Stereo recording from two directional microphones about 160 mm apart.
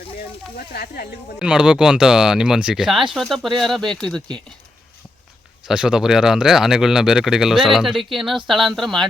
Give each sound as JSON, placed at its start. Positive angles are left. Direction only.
{"t": 0.2, "sound": "speech", "side_deg": 75}
{"t": 1.4, "sound": "speech", "side_deg": -5}
{"t": 5.6, "sound": "speech", "side_deg": -5}